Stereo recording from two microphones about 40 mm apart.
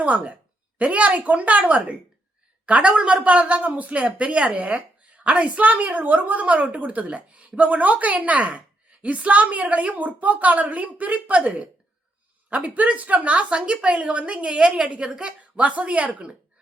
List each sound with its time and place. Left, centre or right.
0.0 s a woman's voice: right